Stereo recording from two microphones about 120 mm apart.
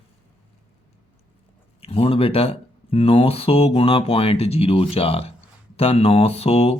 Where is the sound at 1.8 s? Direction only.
55° left (ahead or behind).